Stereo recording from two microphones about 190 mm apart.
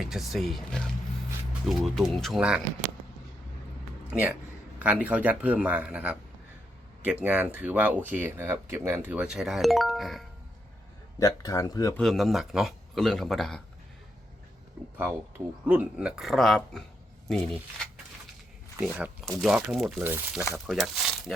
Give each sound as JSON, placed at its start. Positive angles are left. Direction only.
{"t": 0.0, "sound": "speech", "side_deg": 0}
{"t": 4.1, "sound": "speech", "side_deg": -5}
{"t": 11.2, "sound": "speech", "side_deg": 15}
{"t": 11.9, "sound": "speech", "side_deg": 0}
{"t": 15.6, "sound": "speech", "side_deg": -5}
{"t": 20.0, "sound": "speech", "side_deg": -10}
{"t": 20.7, "sound": "speech", "side_deg": 0}